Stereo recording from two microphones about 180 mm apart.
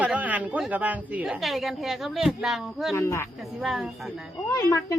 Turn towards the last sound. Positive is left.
turn(degrees=15)  # may be behind; listen again after turning